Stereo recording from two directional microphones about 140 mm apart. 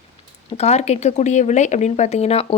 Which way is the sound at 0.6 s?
50° left (ahead or behind).